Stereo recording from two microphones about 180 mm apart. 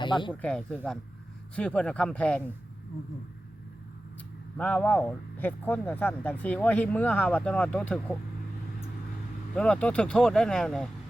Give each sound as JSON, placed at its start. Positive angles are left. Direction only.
{"t": 0.0, "sound": "speech", "side_deg": 25}
{"t": 0.4, "sound": "speech", "side_deg": 5}
{"t": 4.5, "sound": "speech", "side_deg": 5}
{"t": 9.6, "sound": "speech", "side_deg": 5}